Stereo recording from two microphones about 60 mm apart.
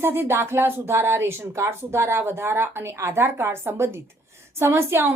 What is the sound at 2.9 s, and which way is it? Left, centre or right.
A woman's voice, right.